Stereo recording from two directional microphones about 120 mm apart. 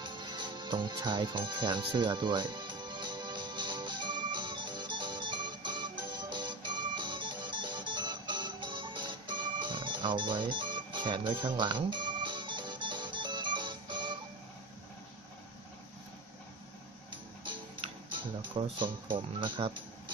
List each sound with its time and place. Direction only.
0.0 s music: 40° right (ahead or behind)
17.5 s speech: 45° right (ahead or behind)